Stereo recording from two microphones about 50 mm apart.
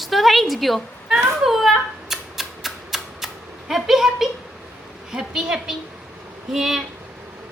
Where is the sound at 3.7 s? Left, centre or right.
Centre.